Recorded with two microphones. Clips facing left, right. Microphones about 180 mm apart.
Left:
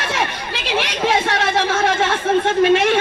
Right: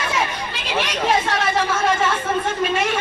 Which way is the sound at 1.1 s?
80° left.